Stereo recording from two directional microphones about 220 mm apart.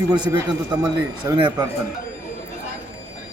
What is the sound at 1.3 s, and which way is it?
Speech, 15° right (ahead or behind).